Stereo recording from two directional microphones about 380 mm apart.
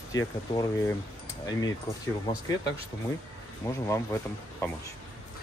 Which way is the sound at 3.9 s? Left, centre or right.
Centre.